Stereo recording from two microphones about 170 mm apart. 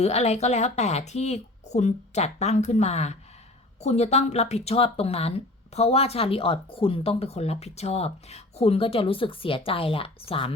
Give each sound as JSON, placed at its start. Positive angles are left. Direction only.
{"t": 0.0, "sound": "speech", "side_deg": 40}